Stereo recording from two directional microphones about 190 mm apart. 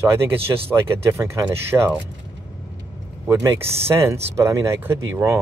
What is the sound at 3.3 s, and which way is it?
Speech, 15° right (ahead or behind).